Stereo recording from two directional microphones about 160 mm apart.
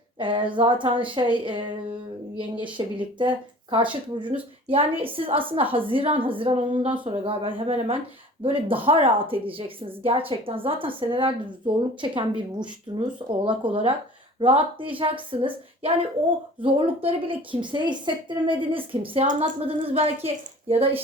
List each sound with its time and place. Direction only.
0.2 s a woman's voice: 30° right (ahead or behind)
2.7 s a woman's voice: 30° right (ahead or behind)
5.0 s a woman's voice: 35° right (ahead or behind)